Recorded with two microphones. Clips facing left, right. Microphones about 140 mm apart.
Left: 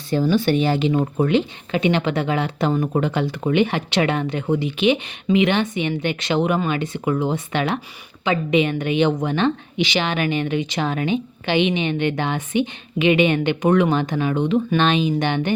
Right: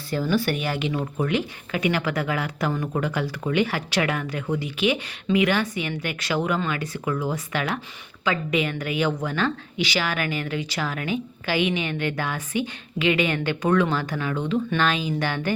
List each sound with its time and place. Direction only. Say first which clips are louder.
0.1 s a woman's voice: left 5 dB; 20° left (ahead or behind)